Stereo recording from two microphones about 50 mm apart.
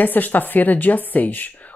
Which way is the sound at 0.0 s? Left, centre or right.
Left.